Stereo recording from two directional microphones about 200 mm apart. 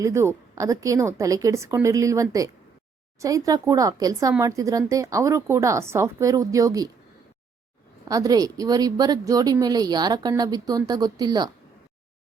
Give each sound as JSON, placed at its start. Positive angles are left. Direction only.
{"t": 0.0, "sound": "speech", "side_deg": -15}
{"t": 8.0, "sound": "speech", "side_deg": -15}